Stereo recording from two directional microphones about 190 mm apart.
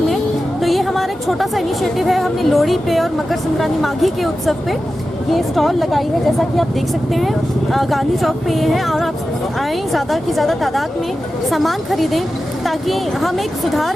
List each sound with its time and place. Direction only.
0.6 s a woman's voice: centre (ahead or behind)